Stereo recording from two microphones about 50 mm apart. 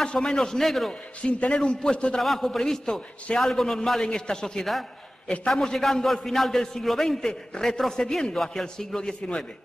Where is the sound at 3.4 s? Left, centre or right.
Centre.